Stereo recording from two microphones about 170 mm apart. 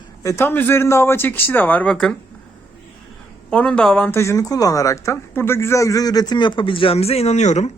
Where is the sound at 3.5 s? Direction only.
5° left (ahead or behind); by 7.7 s 45° left (ahead or behind).